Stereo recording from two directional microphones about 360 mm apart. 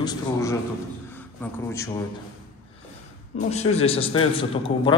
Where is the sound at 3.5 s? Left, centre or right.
Centre.